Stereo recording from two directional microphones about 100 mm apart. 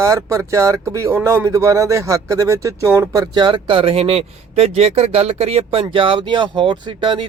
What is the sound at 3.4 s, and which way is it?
Speech, 50° right (ahead or behind).